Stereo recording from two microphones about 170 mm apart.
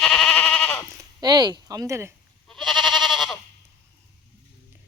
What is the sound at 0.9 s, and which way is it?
Speech, 25° right (ahead or behind).